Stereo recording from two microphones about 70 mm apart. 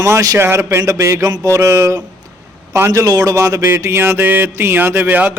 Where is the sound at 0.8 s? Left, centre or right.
Right.